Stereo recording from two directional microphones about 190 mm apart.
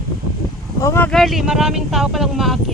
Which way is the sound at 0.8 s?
15° left (ahead or behind).